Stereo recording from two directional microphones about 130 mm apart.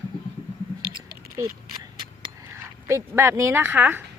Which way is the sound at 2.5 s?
20° right (ahead or behind).